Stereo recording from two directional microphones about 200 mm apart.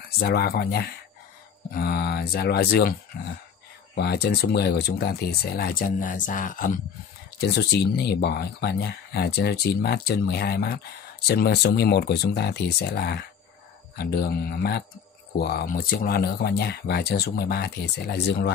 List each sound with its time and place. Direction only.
0.2 s speech: 50° left (ahead or behind)
3.9 s speech: 55° left (ahead or behind)
7.3 s speech: 55° left (ahead or behind)